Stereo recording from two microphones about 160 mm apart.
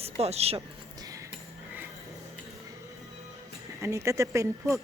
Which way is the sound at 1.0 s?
20° right (ahead or behind).